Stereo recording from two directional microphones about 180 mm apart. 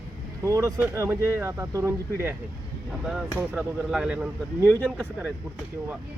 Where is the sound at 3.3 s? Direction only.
5° right (ahead or behind).